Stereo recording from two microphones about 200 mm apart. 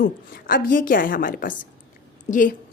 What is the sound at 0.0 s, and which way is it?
A woman's voice, 45° left (ahead or behind).